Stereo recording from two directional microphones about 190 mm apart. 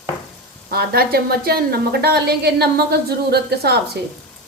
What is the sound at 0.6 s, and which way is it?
A woman's voice, 55° right (ahead or behind).